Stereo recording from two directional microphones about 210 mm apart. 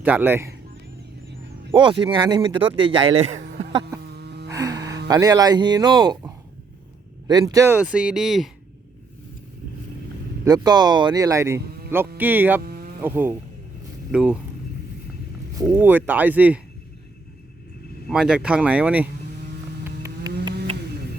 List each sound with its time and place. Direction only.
0.0 s speech: 10° right (ahead or behind)
1.7 s speech: 20° right (ahead or behind)
3.6 s a sound: 25° right (ahead or behind)
4.0 s music: 50° right (ahead or behind)
4.4 s music: 15° right (ahead or behind)
5.0 s speech: 15° right (ahead or behind); by 8.4 s centre (ahead or behind)
10.4 s speech: 20° right (ahead or behind)
12.6 s insect: 45° right (ahead or behind)
13.0 s speech: 10° right (ahead or behind)
15.5 s speech: 10° right (ahead or behind)
18.1 s speech: 5° right (ahead or behind)
19.8 s a sound: 15° right (ahead or behind)